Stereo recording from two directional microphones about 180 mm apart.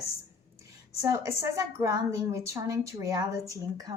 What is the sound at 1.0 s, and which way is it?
A woman's voice, 15° right (ahead or behind).